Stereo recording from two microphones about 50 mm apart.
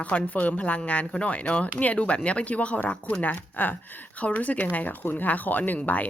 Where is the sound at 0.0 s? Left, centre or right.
Left.